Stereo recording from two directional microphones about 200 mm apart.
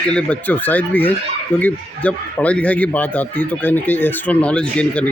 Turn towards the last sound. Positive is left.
turn(degrees=5)  # may be behind; listen again after turning